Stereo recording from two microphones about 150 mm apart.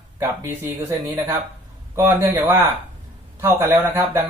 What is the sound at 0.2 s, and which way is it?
Speech, 15° right (ahead or behind).